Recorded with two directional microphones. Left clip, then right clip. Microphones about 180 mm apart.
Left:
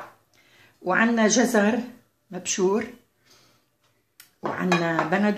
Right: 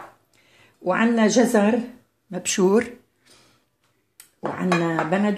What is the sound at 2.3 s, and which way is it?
Speech, 40° right (ahead or behind).